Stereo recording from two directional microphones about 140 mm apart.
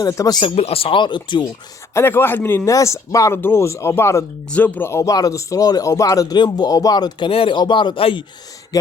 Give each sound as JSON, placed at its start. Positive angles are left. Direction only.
{"t": 0.0, "sound": "a man's voice", "side_deg": 25}
{"t": 0.5, "sound": "speech", "side_deg": 45}
{"t": 1.9, "sound": "a man's voice", "side_deg": 15}
{"t": 8.7, "sound": "a man's voice", "side_deg": 25}